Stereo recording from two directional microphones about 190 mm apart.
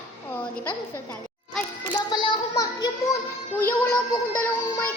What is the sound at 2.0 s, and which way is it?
Speech, 20° left (ahead or behind).